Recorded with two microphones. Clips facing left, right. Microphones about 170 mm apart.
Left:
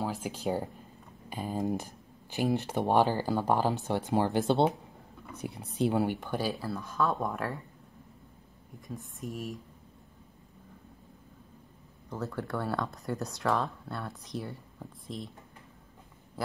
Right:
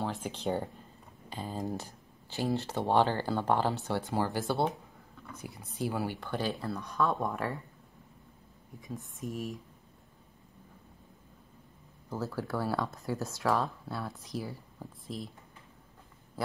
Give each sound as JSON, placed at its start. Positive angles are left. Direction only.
{"t": 0.0, "sound": "speech", "side_deg": 5}
{"t": 1.3, "sound": "speech", "side_deg": 15}
{"t": 5.3, "sound": "speech", "side_deg": 65}
{"t": 5.8, "sound": "speech", "side_deg": 25}
{"t": 8.8, "sound": "speech", "side_deg": 0}
{"t": 12.1, "sound": "speech", "side_deg": -5}